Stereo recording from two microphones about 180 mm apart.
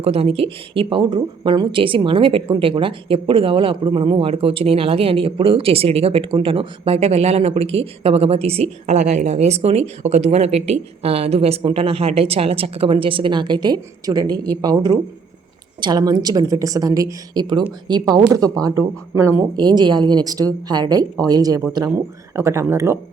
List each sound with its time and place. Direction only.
0.0 s a woman's voice: 35° right (ahead or behind); by 23.0 s 15° right (ahead or behind)